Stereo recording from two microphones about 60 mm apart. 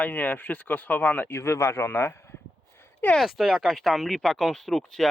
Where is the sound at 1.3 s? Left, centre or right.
Left.